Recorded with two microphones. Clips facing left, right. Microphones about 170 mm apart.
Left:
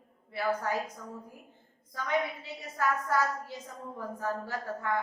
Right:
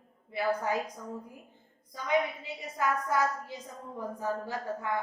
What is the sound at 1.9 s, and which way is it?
A woman's voice, 15° right (ahead or behind).